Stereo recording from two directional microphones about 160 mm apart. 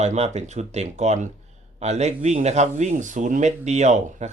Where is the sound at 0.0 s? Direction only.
45° right (ahead or behind).